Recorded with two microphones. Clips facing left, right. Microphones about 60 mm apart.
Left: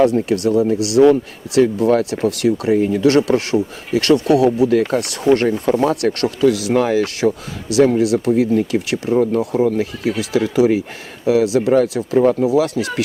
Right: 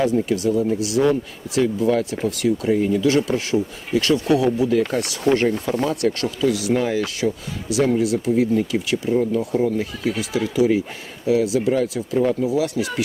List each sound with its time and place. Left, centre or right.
0.0 s speech: left
12.2 s speech: left